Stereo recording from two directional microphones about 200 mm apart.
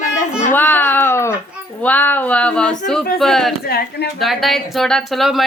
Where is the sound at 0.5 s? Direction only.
10° left (ahead or behind).